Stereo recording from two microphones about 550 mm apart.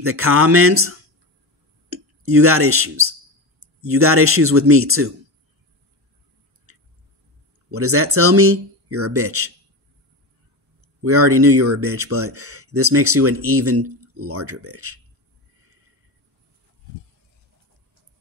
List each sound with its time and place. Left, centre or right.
0.0 s speech: right
7.7 s speech: right
11.0 s speech: right